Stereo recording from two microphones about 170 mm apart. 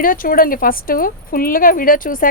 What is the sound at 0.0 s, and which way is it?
A woman's voice, 55° left (ahead or behind).